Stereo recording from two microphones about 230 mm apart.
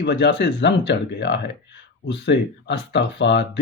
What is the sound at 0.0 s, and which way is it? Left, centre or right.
Speech, left.